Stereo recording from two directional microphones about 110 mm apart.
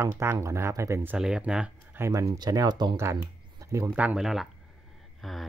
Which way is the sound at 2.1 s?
35° right (ahead or behind).